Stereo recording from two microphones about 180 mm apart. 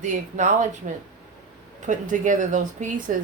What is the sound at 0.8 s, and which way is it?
A woman's voice, 40° right (ahead or behind).